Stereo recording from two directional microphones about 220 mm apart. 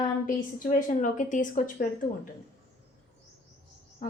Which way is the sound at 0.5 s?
35° left (ahead or behind).